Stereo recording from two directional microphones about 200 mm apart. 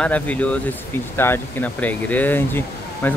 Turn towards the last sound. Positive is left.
turn(degrees=10)  # may be behind; listen again after turning